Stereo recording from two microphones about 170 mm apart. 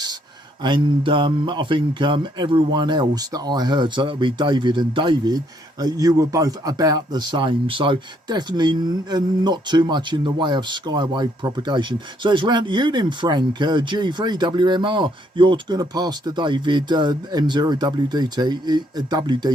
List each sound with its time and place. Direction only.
0.6 s speech: 30° right (ahead or behind)